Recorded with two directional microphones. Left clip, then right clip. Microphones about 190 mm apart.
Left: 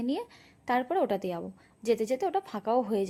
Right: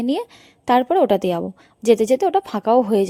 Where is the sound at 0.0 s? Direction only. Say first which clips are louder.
Right 10 dB; 40° right (ahead or behind).